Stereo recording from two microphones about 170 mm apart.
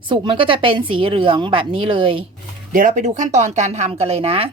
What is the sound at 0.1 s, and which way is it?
Speech, 30° right (ahead or behind).